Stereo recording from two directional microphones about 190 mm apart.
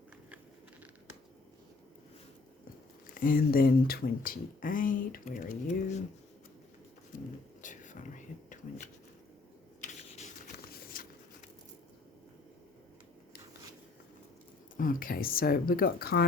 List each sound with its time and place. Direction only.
3.2 s speech: 50° left (ahead or behind)
7.6 s whispering: 40° left (ahead or behind)
9.8 s writing: 40° left (ahead or behind)
10.7 s a sound: 50° left (ahead or behind)
14.8 s speech: 45° left (ahead or behind)